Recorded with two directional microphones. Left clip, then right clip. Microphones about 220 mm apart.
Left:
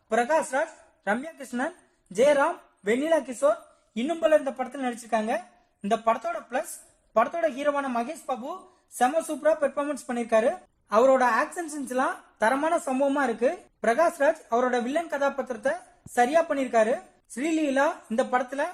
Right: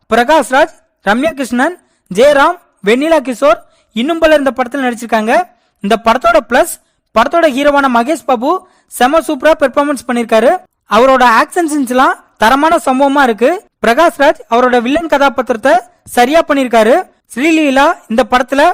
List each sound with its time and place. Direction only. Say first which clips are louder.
0.1 s speech: right 15 dB; 40° right (ahead or behind)
13.2 s speech: right 15 dB; 50° right (ahead or behind)